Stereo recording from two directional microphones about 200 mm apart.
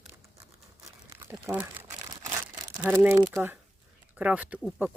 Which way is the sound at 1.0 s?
15° right (ahead or behind).